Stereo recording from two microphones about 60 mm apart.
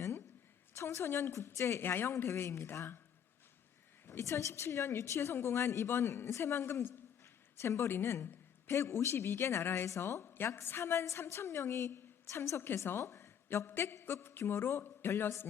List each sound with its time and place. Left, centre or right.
0.8 s a woman's voice: left
1.8 s a woman's voice: left
4.0 s a woman's voice: left
10.2 s a woman's voice: left